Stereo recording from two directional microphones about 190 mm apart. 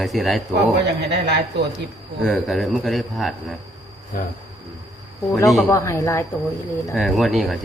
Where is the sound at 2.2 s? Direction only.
Centre (ahead or behind).